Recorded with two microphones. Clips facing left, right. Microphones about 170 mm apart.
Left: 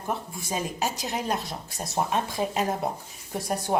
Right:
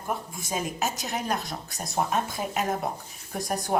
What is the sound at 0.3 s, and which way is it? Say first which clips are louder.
Speech: even; 35° left (ahead or behind).